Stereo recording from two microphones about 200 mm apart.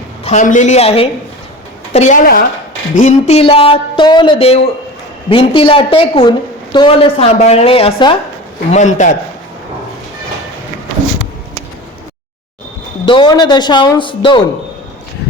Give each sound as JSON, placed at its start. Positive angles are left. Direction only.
{"t": 0.3, "sound": "speech", "side_deg": 40}
{"t": 8.7, "sound": "speech", "side_deg": 35}
{"t": 13.1, "sound": "speech", "side_deg": 25}